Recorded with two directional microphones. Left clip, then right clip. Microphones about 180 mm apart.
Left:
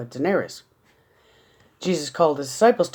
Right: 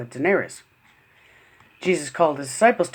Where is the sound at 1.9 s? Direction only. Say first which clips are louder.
Even; 25° left (ahead or behind).